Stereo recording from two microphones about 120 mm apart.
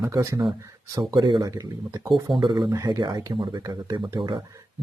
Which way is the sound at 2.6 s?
30° right (ahead or behind).